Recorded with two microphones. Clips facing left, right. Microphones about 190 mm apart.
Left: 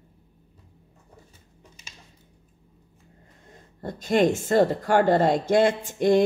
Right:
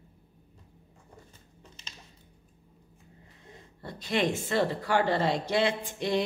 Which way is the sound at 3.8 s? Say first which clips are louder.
Left 8 dB; 45° left (ahead or behind).